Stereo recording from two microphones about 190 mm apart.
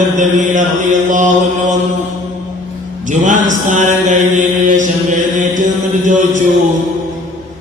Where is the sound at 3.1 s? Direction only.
40° right (ahead or behind).